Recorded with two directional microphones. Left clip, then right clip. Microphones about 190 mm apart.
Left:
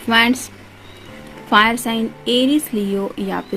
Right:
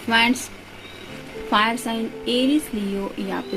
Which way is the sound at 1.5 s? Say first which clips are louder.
Left 6 dB; 55° left (ahead or behind).